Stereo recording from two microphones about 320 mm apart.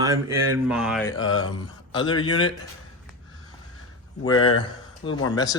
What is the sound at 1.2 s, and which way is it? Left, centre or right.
Speech, left.